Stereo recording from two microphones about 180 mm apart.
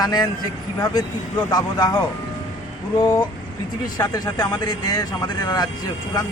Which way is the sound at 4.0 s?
20° left (ahead or behind).